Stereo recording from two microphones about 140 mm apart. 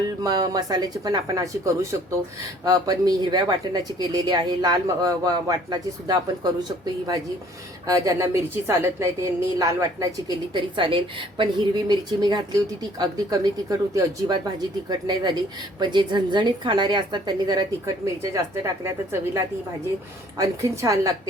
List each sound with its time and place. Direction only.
0.2 s speech: 30° right (ahead or behind)
7.9 s a woman's voice: 20° right (ahead or behind)
20.4 s speech: 25° right (ahead or behind)